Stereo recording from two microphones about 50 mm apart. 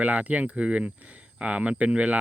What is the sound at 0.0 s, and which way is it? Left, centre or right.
Speech, right.